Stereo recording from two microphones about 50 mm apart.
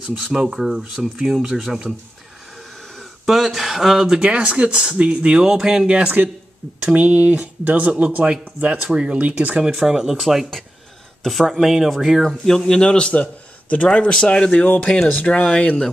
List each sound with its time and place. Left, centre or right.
0.2 s speech: centre
3.0 s speech: centre
4.2 s speech: right
9.6 s a man's voice: centre
15.0 s speech: left